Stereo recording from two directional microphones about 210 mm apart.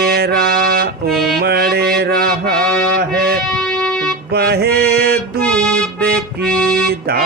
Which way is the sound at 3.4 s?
5° left (ahead or behind).